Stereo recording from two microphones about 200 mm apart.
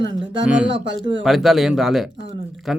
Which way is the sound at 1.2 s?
Centre (ahead or behind).